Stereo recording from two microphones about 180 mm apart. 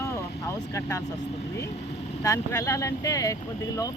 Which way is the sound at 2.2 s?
20° left (ahead or behind).